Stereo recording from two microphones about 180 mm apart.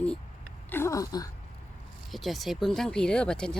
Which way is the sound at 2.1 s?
Centre (ahead or behind).